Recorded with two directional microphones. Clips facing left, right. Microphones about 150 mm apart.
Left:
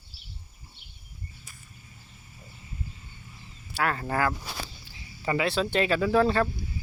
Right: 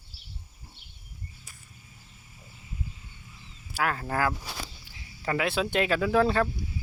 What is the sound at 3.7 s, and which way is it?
Speech, centre (ahead or behind).